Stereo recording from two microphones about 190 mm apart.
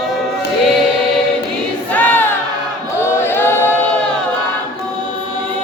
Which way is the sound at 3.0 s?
10° left (ahead or behind).